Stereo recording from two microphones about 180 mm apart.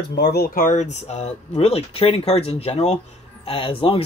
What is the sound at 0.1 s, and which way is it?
Speech, 65° left (ahead or behind).